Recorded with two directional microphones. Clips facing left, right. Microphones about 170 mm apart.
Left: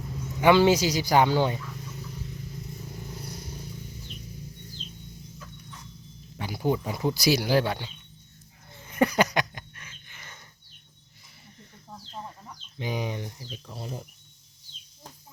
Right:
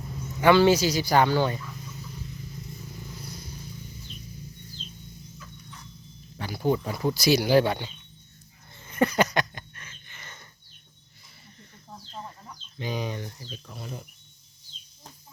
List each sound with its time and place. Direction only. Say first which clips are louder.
0.4 s speech: right 1 dB; 15° left (ahead or behind)
6.4 s speech: right 1 dB; 15° left (ahead or behind)
7.3 s speech: right 3 dB; centre (ahead or behind)
8.7 s a sound: left 1 dB; 10° left (ahead or behind)
12.8 s speech: even; 15° left (ahead or behind)